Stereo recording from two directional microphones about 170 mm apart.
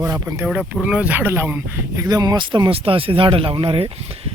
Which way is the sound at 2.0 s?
25° right (ahead or behind).